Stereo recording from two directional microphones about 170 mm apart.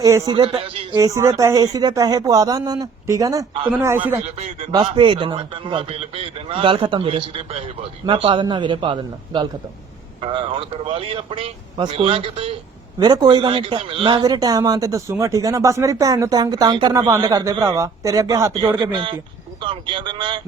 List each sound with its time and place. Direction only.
0.0 s a man's voice: 20° right (ahead or behind)
0.9 s a man's voice: 20° right (ahead or behind)
3.7 s a man's voice: 10° right (ahead or behind)
4.2 s a man's voice: 40° right (ahead or behind)
4.7 s a man's voice: 30° right (ahead or behind)
18.8 s a man's voice: 30° right (ahead or behind)